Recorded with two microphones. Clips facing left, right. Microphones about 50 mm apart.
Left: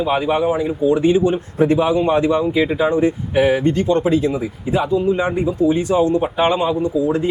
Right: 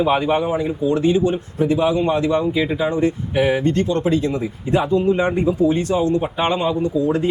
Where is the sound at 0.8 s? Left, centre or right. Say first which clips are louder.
Left 3 dB; centre.